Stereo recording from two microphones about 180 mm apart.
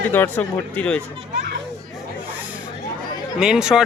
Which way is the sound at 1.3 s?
75° right (ahead or behind).